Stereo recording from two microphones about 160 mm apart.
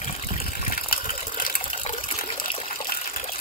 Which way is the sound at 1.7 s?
35° left (ahead or behind).